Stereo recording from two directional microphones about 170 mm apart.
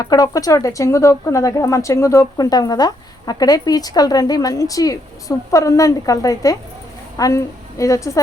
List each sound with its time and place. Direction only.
0.0 s speech: 20° left (ahead or behind)